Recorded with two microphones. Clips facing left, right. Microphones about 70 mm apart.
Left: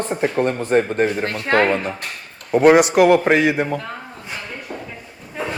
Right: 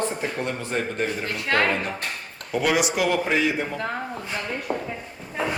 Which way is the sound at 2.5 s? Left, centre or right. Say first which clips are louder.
Left 10 dB; left.